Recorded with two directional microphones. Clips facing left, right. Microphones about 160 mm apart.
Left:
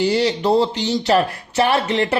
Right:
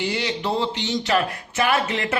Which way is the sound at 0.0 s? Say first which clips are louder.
Left 8 dB; 35° left (ahead or behind).